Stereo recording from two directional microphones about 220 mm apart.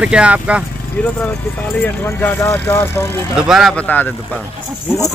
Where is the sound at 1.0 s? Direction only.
5° left (ahead or behind).